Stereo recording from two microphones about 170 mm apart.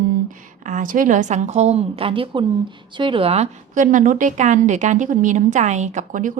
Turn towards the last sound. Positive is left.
turn(degrees=-50)  # may be behind; listen again after turning